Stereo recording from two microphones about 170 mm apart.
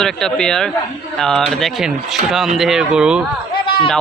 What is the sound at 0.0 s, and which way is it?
Speech, 5° left (ahead or behind).